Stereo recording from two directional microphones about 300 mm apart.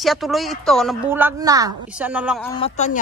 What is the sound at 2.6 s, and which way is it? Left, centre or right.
Speech, left.